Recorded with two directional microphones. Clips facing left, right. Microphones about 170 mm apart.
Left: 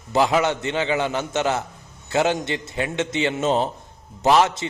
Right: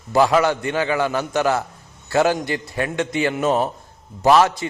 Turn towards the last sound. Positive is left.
turn(degrees=20)  # may be behind; listen again after turning